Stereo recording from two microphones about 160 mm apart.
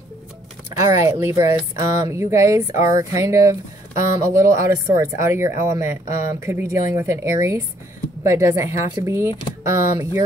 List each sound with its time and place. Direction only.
0.7 s speech: 20° right (ahead or behind)